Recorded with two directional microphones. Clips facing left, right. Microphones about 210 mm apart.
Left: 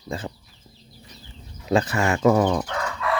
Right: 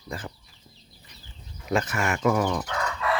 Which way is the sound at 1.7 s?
35° left (ahead or behind).